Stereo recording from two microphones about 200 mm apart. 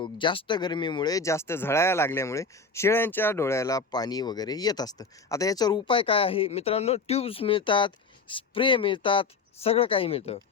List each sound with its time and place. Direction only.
0.0 s speech: 25° left (ahead or behind)